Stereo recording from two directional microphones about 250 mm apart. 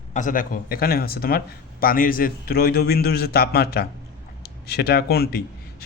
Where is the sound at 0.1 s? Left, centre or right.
Left.